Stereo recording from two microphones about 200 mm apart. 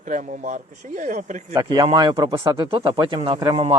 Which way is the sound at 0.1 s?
40° right (ahead or behind).